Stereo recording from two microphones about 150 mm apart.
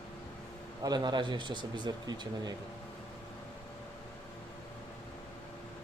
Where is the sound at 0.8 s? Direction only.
25° right (ahead or behind).